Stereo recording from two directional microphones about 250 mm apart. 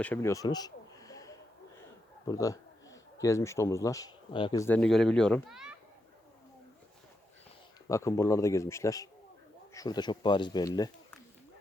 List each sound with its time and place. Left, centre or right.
0.0 s a sound: centre
2.2 s a man's voice: centre
7.9 s speech: centre